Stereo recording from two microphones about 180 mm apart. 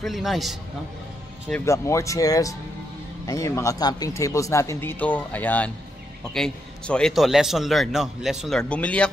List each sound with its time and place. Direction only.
0.0 s a man's voice: centre (ahead or behind)
1.7 s a man's voice: 15° left (ahead or behind)